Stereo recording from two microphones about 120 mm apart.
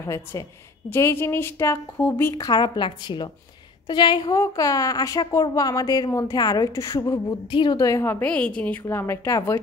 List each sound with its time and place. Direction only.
0.0 s a woman's voice: 25° left (ahead or behind)
7.5 s a woman's voice: 40° left (ahead or behind)
7.8 s a woman's voice: 25° left (ahead or behind)
8.8 s a woman's voice: 20° left (ahead or behind)